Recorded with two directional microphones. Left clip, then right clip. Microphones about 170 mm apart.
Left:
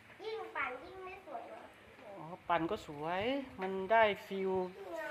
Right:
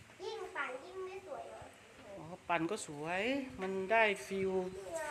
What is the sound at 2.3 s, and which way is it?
Speech, 15° right (ahead or behind).